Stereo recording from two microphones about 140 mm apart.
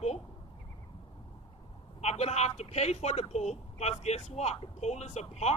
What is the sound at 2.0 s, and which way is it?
Speech, 50° left (ahead or behind).